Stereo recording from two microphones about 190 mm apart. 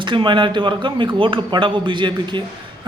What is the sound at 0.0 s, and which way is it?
A man's voice, 25° right (ahead or behind).